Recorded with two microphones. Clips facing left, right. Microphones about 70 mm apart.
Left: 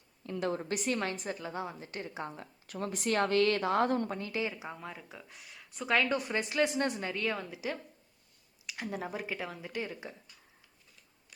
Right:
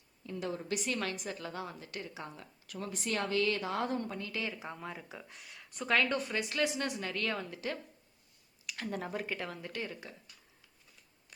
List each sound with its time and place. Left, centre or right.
0.3 s a woman's voice: left
0.5 s a woman's voice: left
0.9 s a woman's voice: left
1.4 s a woman's voice: left
2.9 s a woman's voice: left
4.3 s a woman's voice: left
4.5 s speech: centre
6.6 s a woman's voice: left
7.1 s speech: centre